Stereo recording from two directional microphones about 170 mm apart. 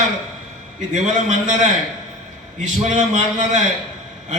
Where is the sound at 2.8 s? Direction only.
45° right (ahead or behind).